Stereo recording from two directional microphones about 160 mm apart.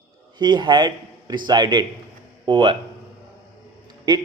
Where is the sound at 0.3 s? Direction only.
30° right (ahead or behind).